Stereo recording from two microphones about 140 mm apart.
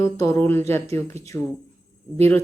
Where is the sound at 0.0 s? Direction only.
20° left (ahead or behind).